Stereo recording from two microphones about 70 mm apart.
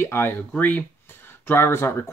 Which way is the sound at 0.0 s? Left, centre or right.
Left.